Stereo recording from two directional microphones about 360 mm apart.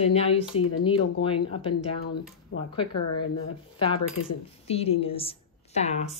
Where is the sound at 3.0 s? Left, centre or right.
Left.